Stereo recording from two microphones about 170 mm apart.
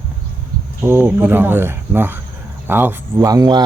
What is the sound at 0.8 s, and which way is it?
Speech, 15° right (ahead or behind).